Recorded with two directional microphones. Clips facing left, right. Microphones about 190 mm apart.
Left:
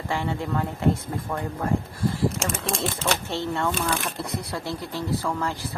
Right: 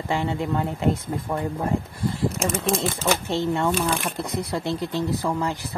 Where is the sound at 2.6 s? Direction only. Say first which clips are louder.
Right 3 dB; 5° right (ahead or behind).